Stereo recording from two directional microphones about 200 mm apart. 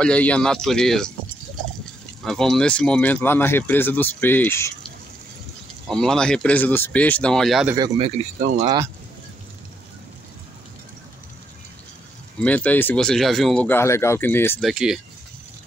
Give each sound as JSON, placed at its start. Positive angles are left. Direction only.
{"t": 0.0, "sound": "speech", "side_deg": 5}
{"t": 2.2, "sound": "speech", "side_deg": 5}
{"t": 5.9, "sound": "speech", "side_deg": 0}
{"t": 7.7, "sound": "speech", "side_deg": -20}
{"t": 8.2, "sound": "speech", "side_deg": -40}
{"t": 12.4, "sound": "speech", "side_deg": 5}
{"t": 14.6, "sound": "speech", "side_deg": 0}